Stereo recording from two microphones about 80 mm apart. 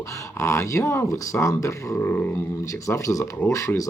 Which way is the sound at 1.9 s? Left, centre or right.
Left.